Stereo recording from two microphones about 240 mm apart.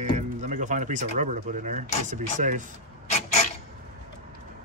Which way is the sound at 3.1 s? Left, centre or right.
Left.